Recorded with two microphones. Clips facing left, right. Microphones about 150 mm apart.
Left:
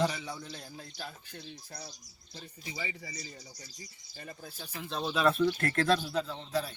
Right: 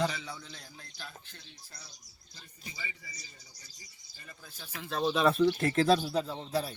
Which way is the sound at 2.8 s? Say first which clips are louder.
Left 6 dB; 70° left (ahead or behind).